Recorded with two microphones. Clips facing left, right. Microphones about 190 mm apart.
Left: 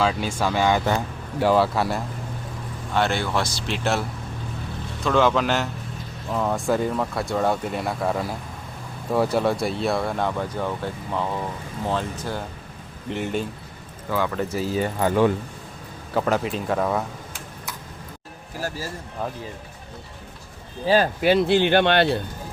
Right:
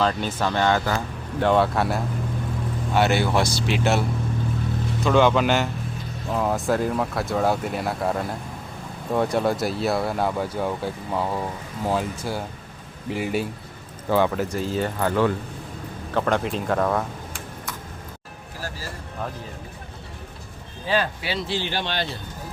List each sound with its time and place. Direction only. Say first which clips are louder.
0.0 s speech: even; 5° left (ahead or behind)
5.0 s speech: right 1 dB; centre (ahead or behind)
14.3 s speech: left 1 dB; 5° left (ahead or behind)
20.8 s speech: left 6 dB; 40° left (ahead or behind); by 22.2 s 65° left (ahead or behind)